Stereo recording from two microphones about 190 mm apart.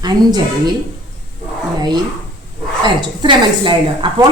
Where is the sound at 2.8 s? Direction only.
25° right (ahead or behind).